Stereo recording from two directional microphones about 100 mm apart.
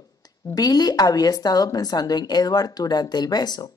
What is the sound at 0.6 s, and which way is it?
A woman's voice, 40° left (ahead or behind).